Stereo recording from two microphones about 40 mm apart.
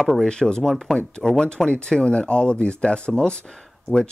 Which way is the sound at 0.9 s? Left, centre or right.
Left.